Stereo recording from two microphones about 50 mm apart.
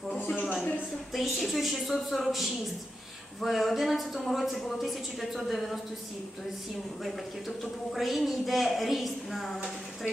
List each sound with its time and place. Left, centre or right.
0.5 s a sound: left
1.1 s a man's voice: centre
7.0 s a man's voice: centre